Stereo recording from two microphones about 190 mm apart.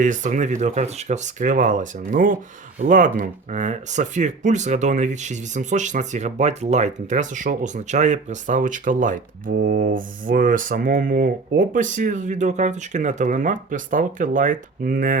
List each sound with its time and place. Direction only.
0.0 s speech: 40° right (ahead or behind)